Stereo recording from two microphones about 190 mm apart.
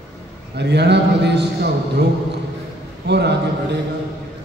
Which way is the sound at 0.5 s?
60° right (ahead or behind).